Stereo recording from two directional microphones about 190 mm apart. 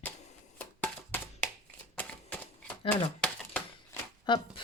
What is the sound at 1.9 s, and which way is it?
Shuffling cards, 10° left (ahead or behind).